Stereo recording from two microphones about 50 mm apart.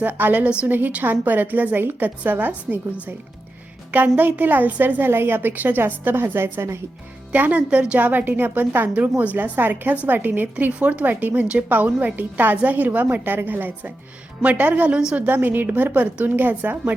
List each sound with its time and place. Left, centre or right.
0.0 s a woman's voice: right
7.3 s speech: right
7.9 s a woman's voice: right
11.0 s a woman's voice: right